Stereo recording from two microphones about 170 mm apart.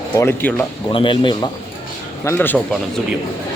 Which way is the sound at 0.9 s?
30° left (ahead or behind).